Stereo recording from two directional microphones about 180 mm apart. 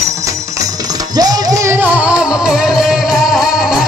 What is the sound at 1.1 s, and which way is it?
Music, 20° right (ahead or behind).